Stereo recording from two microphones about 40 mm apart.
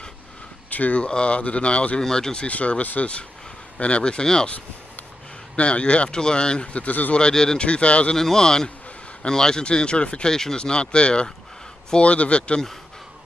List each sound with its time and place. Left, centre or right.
0.7 s speech: left
1.0 s speech: left
2.0 s speech: centre
2.4 s speech: left
3.8 s speech: left
5.6 s speech: left
6.0 s speech: centre
6.7 s speech: left
7.2 s speech: centre
8.2 s speech: centre
10.3 s speech: centre